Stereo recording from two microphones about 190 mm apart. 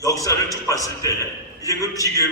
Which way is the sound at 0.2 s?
20° left (ahead or behind).